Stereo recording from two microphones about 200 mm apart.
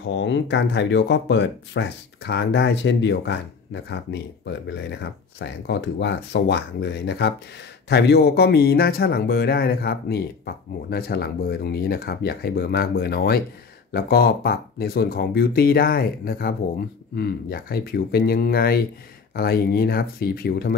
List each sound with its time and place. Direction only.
0.1 s speech: 65° left (ahead or behind)